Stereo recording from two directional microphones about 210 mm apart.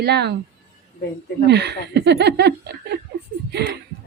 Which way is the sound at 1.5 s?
55° right (ahead or behind).